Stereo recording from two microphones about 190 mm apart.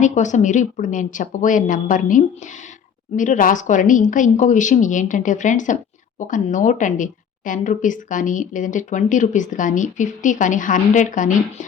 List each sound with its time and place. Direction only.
0.0 s speech: 40° left (ahead or behind)